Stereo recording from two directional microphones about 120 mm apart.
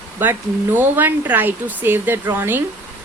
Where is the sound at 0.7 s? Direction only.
15° right (ahead or behind).